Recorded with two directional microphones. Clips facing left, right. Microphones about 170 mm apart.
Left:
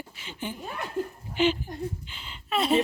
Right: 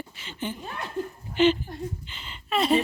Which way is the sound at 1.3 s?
5° left (ahead or behind).